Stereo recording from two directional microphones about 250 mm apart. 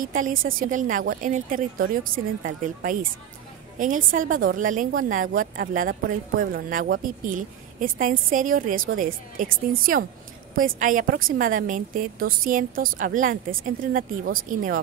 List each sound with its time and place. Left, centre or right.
0.0 s a woman's voice: right